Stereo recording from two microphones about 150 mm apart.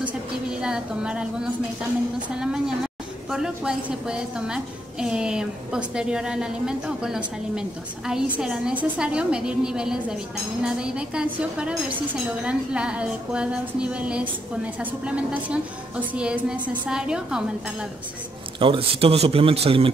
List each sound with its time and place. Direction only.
0.6 s a woman's voice: 5° right (ahead or behind)
18.6 s speech: 35° right (ahead or behind)